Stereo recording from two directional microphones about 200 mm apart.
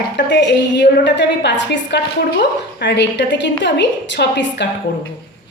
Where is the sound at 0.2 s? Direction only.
60° left (ahead or behind).